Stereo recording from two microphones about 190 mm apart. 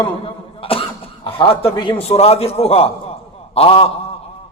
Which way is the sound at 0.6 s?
30° left (ahead or behind).